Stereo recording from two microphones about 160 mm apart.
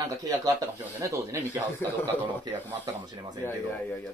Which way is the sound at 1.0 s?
20° right (ahead or behind).